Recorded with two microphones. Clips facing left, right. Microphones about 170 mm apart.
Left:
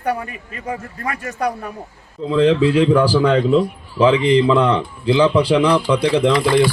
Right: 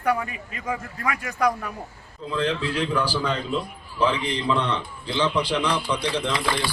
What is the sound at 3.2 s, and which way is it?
A man's voice, 80° left.